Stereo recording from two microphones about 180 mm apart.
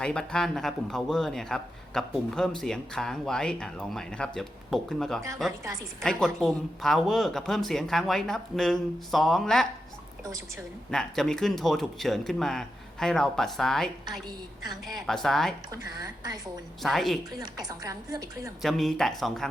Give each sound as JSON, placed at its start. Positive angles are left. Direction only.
{"t": 0.0, "sound": "speech", "side_deg": 5}
{"t": 10.9, "sound": "speech", "side_deg": 5}
{"t": 14.3, "sound": "a woman's voice", "side_deg": -20}
{"t": 15.0, "sound": "speech", "side_deg": 0}
{"t": 15.9, "sound": "a woman's voice", "side_deg": -20}
{"t": 16.8, "sound": "speech", "side_deg": 0}
{"t": 17.4, "sound": "a woman's voice", "side_deg": -20}
{"t": 18.6, "sound": "speech", "side_deg": 0}